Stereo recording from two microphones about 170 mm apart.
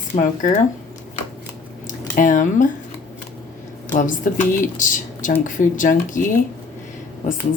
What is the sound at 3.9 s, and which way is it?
Speech, 50° left (ahead or behind).